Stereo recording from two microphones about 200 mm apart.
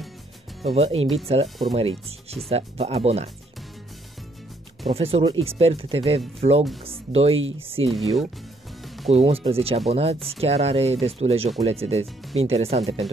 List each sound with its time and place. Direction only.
0.7 s speech: 30° right (ahead or behind)
4.9 s speech: 30° right (ahead or behind)
7.9 s speech: centre (ahead or behind)
8.8 s music: centre (ahead or behind)
9.1 s speech: 30° right (ahead or behind)